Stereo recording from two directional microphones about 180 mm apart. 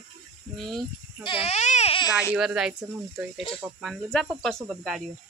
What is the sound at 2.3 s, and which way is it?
Speech, 5° right (ahead or behind).